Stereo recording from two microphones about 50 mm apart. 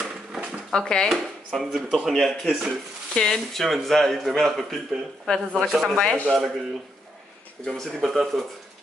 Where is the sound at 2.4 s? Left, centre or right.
Centre.